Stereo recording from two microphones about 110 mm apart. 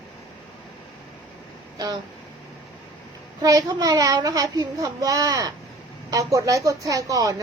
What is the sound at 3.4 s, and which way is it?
A woman's voice, 35° right (ahead or behind).